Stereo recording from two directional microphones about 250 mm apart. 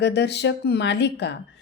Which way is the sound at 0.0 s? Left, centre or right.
Left.